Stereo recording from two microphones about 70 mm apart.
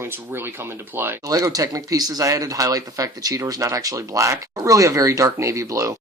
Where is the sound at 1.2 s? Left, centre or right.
Right.